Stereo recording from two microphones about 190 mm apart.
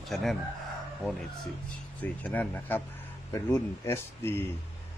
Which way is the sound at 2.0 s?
10° left (ahead or behind).